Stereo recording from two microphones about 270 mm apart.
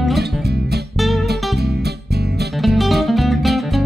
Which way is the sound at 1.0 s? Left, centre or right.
Centre.